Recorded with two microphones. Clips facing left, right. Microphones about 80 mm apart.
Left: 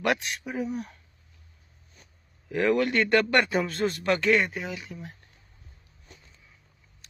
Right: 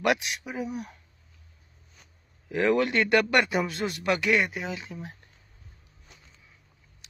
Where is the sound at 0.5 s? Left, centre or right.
Centre.